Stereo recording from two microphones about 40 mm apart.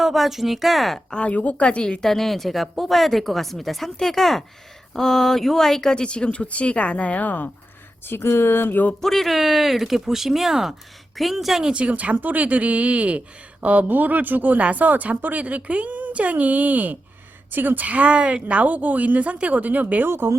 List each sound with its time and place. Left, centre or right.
0.0 s speech: centre
1.1 s a woman's voice: left
2.0 s speech: centre; by 7.5 s left
8.0 s speech: left
9.0 s speech: centre
11.8 s speech: right
13.8 s speech: right
20.1 s speech: right